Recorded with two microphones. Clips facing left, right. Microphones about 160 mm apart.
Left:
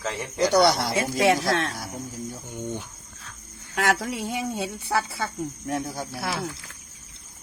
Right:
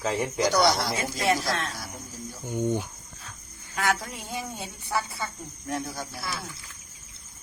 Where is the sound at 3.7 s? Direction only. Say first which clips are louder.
Left 4 dB; 85° left.